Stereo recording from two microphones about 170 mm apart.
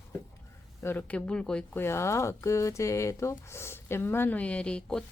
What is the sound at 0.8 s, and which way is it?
Speech, 10° left (ahead or behind).